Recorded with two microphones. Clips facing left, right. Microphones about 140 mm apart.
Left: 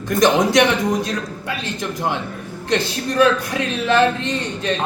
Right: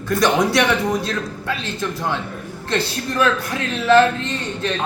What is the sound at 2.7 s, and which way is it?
Speech, 15° left (ahead or behind).